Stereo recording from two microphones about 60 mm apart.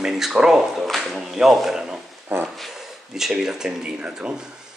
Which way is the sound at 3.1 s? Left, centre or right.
Centre.